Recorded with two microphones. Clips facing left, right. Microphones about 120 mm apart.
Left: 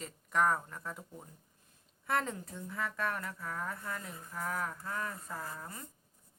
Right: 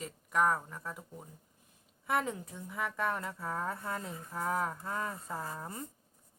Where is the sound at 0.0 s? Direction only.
5° right (ahead or behind); by 5.8 s 25° right (ahead or behind).